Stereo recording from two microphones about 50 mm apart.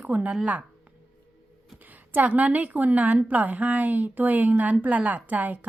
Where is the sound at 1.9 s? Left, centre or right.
Right.